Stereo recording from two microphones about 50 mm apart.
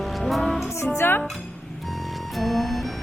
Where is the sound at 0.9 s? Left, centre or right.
Left.